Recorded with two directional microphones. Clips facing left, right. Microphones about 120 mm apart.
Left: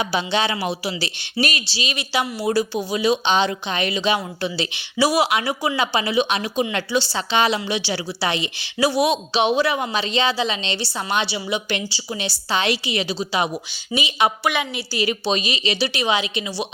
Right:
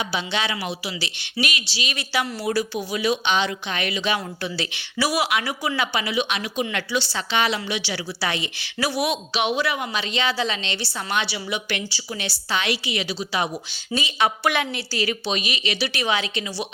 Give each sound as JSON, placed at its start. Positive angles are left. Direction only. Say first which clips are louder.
{"t": 0.0, "sound": "speech", "louder": "left 4 dB", "side_deg": 45}
{"t": 0.3, "sound": "a woman's voice", "louder": "left 4 dB", "side_deg": 30}
{"t": 13.9, "sound": "speech", "louder": "left 2 dB", "side_deg": 15}
{"t": 14.4, "sound": "a woman's voice", "louder": "even", "side_deg": 5}
{"t": 15.3, "sound": "a woman's voice", "louder": "left 4 dB", "side_deg": 30}